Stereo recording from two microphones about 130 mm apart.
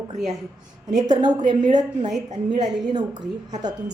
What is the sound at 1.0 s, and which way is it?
A woman's voice, 35° right (ahead or behind).